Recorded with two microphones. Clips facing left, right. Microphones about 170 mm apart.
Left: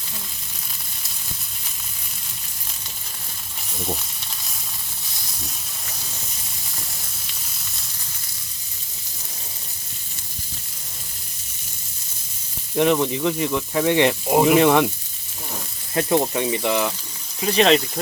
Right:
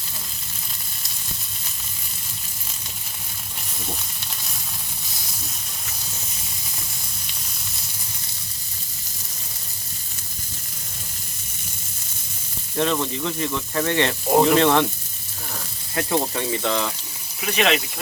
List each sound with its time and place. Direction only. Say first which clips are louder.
12.7 s speech: left 4 dB; 15° left (ahead or behind)
16.0 s speech: left 4 dB; 20° left (ahead or behind)
17.4 s speech: left 5 dB; 35° left (ahead or behind)